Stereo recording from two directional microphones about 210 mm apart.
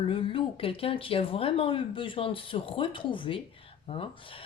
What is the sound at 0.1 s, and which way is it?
Speech, 25° left (ahead or behind).